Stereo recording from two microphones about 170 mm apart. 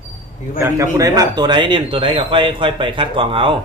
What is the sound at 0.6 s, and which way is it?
A man's voice, 20° right (ahead or behind).